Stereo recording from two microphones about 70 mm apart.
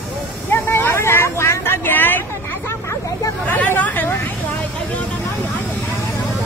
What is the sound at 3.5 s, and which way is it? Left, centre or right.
Hubbub, left.